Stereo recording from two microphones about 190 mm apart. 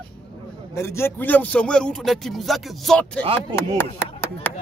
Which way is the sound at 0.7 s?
15° left (ahead or behind).